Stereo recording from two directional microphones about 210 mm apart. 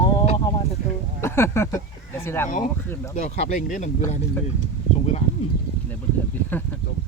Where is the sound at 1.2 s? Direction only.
10° left (ahead or behind).